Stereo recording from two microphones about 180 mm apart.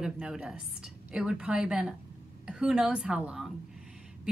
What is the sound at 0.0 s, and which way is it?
A woman's voice, 5° right (ahead or behind).